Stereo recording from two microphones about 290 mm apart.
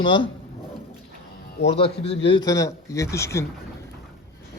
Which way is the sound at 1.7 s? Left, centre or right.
Centre.